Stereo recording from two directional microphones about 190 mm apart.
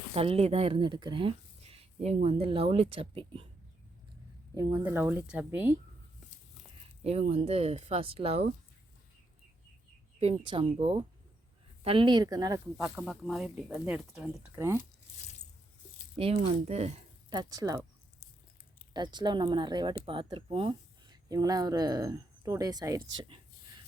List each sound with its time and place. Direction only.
0.1 s speech: 30° right (ahead or behind)
4.8 s speech: 10° right (ahead or behind)
7.0 s speech: 35° right (ahead or behind)
10.2 s speech: 30° right (ahead or behind)
12.7 s speech: centre (ahead or behind)
16.1 s speech: 30° right (ahead or behind)
17.3 s speech: 20° right (ahead or behind)
18.9 s speech: 25° right (ahead or behind)